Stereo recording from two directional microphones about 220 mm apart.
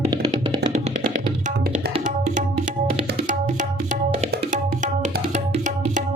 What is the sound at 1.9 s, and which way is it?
Tabla, 35° right (ahead or behind).